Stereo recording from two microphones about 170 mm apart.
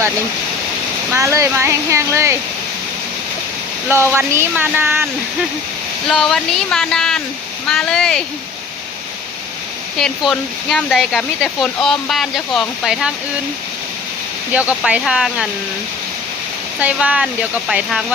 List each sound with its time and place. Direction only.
1.1 s speech: 15° right (ahead or behind)
3.8 s speech: 15° right (ahead or behind)
6.1 s speech: 5° left (ahead or behind)
10.0 s speech: 5° left (ahead or behind)
14.5 s speech: 10° right (ahead or behind)
16.8 s speech: 10° right (ahead or behind)